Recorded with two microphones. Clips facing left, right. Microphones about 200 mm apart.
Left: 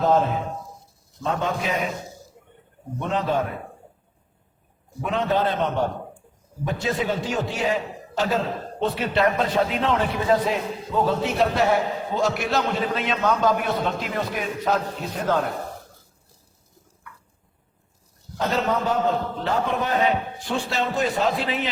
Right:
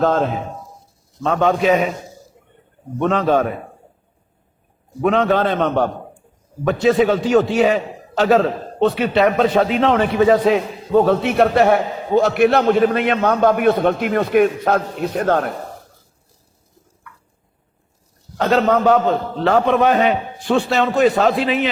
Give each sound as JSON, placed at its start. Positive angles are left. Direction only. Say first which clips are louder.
{"t": 0.0, "sound": "a man's voice", "louder": "right 3 dB", "side_deg": -80}
{"t": 3.0, "sound": "a man's voice", "louder": "right 8 dB", "side_deg": -80}
{"t": 5.0, "sound": "a man's voice", "louder": "right 7 dB", "side_deg": -75}
{"t": 18.3, "sound": "a man's voice", "louder": "right 8 dB", "side_deg": -75}